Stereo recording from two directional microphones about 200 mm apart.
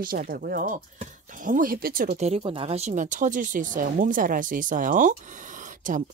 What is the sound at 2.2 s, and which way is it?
Speech, 30° right (ahead or behind).